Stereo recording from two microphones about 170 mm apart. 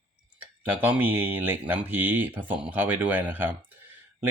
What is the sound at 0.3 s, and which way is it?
Speech, 10° right (ahead or behind).